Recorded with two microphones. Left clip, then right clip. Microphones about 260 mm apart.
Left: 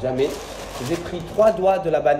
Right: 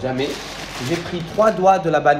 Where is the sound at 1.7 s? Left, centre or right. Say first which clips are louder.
Right 3 dB; centre.